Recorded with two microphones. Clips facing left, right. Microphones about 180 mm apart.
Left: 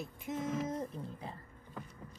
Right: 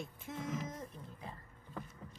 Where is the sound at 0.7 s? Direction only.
35° left (ahead or behind).